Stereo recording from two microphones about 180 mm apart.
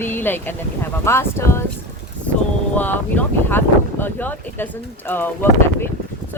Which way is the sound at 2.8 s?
10° left (ahead or behind).